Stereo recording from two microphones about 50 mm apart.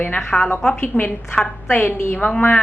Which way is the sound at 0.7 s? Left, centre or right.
Left.